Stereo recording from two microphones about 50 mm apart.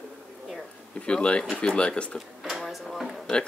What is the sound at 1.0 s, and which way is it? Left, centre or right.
Speech, left.